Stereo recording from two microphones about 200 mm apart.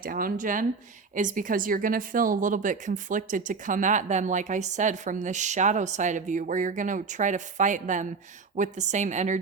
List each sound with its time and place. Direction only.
0.0 s speech: 45° right (ahead or behind)